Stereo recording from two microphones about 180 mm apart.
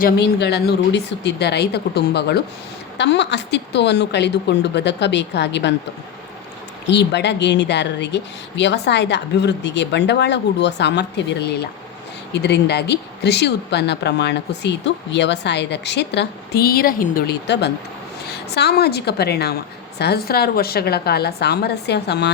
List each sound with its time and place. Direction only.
0.0 s speech: 70° left (ahead or behind)
6.8 s a woman's voice: 70° left (ahead or behind)